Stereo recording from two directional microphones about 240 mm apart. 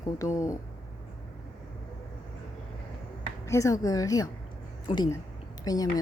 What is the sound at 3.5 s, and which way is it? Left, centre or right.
A woman's voice, centre.